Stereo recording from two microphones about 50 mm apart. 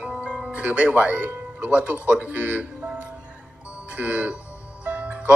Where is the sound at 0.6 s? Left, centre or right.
Right.